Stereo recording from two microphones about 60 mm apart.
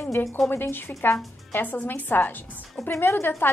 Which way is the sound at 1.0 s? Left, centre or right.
Left.